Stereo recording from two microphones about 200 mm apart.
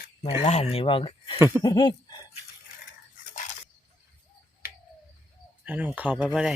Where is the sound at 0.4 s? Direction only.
30° left (ahead or behind).